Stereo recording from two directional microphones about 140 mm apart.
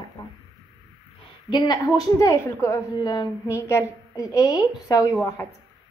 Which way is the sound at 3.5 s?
20° left (ahead or behind).